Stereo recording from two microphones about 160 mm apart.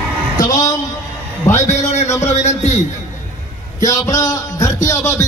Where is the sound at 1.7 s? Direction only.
45° left (ahead or behind).